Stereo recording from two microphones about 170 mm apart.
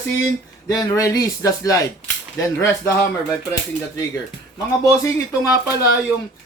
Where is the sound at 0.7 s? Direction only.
20° left (ahead or behind).